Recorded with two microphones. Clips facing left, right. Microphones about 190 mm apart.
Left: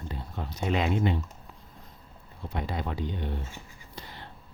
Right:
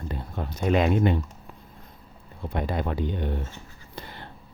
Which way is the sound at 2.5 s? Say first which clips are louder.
Right 5 dB; 55° right (ahead or behind).